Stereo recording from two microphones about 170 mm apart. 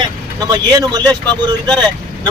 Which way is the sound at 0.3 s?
25° right (ahead or behind).